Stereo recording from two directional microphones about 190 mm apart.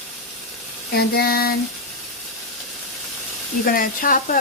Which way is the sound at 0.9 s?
55° left (ahead or behind).